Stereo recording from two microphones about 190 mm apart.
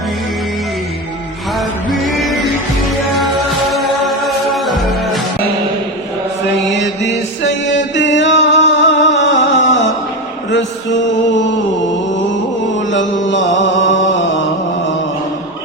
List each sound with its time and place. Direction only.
1.5 s music: centre (ahead or behind)
3.7 s music: centre (ahead or behind)
6.4 s chant: 65° left (ahead or behind)
10.5 s mantra: 70° left (ahead or behind)
12.3 s music: 75° left (ahead or behind)
13.2 s mantra: 75° left (ahead or behind)